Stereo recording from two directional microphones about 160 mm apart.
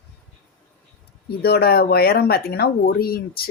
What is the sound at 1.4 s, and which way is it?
Speech, 75° left (ahead or behind).